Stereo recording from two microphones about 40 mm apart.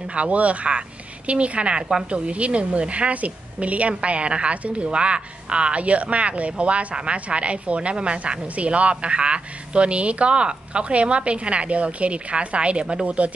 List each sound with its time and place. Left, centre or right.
0.1 s a woman's voice: right